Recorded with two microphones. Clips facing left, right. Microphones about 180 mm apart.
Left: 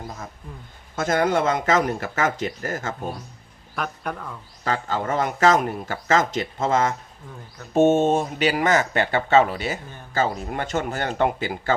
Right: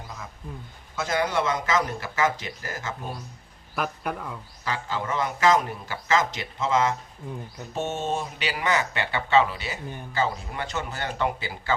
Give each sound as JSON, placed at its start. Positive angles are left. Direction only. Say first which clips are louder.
{"t": 0.9, "sound": "speech", "louder": "left 5 dB", "side_deg": 50}
{"t": 3.8, "sound": "speech", "louder": "even", "side_deg": -5}
{"t": 4.6, "sound": "speech", "louder": "left 5 dB", "side_deg": 50}